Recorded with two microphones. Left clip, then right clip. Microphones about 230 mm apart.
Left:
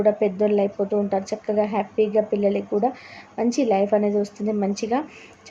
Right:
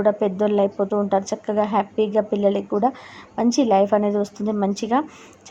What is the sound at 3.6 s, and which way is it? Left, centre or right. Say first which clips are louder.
A woman's voice: right 2 dB; centre.